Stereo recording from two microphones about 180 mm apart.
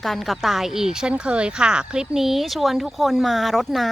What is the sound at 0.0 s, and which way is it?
Speech, centre (ahead or behind).